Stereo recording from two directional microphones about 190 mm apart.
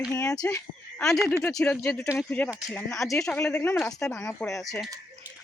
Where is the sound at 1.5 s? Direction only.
5° left (ahead or behind).